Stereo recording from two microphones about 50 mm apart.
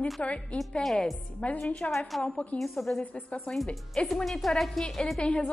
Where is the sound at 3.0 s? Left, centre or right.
Left.